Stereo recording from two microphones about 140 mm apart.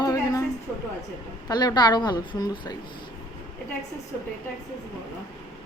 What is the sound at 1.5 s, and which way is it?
A woman's voice, 30° left (ahead or behind).